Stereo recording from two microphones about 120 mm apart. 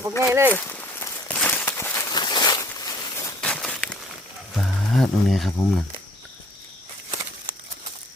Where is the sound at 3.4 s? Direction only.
10° left (ahead or behind).